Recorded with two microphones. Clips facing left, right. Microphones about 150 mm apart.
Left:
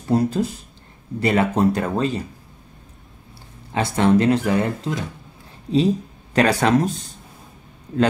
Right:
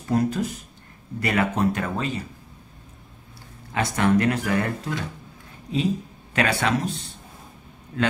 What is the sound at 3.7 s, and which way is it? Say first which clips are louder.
Speech: left 4 dB; 30° left (ahead or behind).